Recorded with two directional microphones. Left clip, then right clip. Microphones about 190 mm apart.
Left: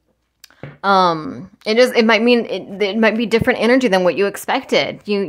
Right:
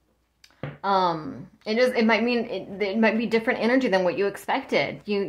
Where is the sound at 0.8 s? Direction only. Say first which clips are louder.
Left 9 dB; 50° left (ahead or behind).